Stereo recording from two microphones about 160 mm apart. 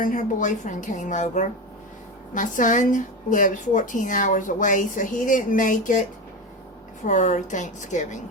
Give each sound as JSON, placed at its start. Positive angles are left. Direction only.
{"t": 0.0, "sound": "a woman's voice", "side_deg": 55}
{"t": 7.0, "sound": "a woman's voice", "side_deg": 50}